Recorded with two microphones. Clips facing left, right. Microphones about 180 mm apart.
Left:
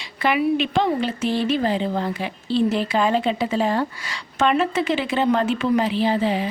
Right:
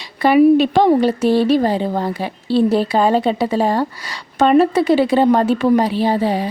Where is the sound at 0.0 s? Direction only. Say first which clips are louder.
Right 9 dB; 35° right (ahead or behind).